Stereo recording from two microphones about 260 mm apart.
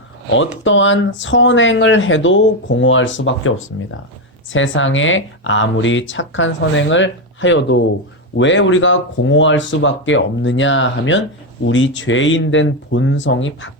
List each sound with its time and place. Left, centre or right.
0.6 s speech: left
4.5 s speech: left